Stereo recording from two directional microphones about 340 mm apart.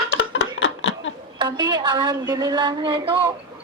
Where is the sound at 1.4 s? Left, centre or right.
Centre.